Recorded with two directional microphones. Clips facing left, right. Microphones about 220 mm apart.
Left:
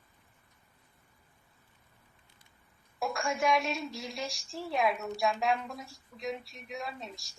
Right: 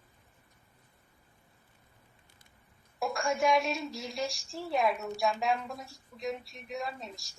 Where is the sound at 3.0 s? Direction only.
Centre (ahead or behind).